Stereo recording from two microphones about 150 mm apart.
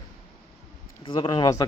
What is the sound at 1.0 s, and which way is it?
Speech, 35° left (ahead or behind).